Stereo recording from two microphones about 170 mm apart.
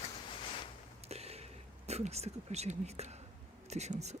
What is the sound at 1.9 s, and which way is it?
Speech, 40° right (ahead or behind).